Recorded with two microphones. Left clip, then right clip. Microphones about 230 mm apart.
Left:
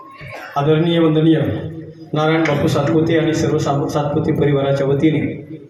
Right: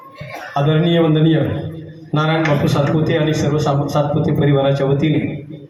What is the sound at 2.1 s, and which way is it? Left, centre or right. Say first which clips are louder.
A man's voice: left 1 dB; right.